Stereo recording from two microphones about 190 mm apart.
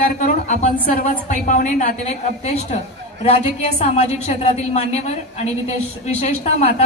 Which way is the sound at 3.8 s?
35° left (ahead or behind).